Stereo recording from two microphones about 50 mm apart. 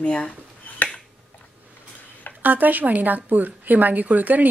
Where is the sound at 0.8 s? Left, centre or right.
Left.